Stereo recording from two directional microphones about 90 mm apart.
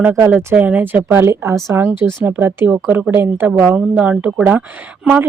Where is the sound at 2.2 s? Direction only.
20° right (ahead or behind).